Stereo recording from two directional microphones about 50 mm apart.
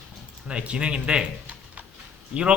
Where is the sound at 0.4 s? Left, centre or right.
Right.